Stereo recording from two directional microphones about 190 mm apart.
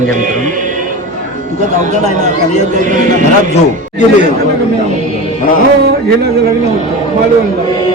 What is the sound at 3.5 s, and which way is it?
Speech, 40° left (ahead or behind).